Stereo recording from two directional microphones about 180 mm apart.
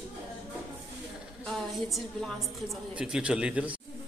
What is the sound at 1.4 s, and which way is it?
A woman's voice, centre (ahead or behind).